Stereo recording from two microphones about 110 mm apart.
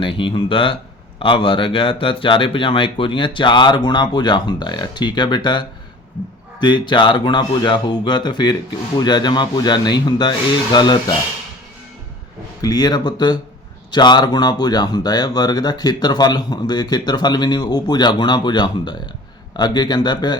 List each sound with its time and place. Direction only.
0.0 s speech: 50° left (ahead or behind)
12.6 s speech: 40° left (ahead or behind)